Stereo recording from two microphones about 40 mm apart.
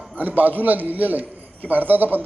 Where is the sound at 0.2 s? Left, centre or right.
Right.